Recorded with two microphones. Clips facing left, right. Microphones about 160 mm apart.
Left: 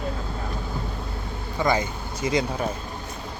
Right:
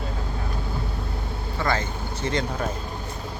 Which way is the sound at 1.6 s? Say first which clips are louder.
Left 3 dB; 15° left (ahead or behind).